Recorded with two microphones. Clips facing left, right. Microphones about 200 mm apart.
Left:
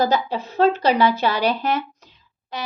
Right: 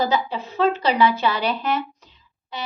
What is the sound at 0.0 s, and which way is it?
A woman's voice, 40° left (ahead or behind).